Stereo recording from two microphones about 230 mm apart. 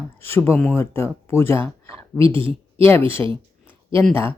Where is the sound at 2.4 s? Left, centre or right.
Right.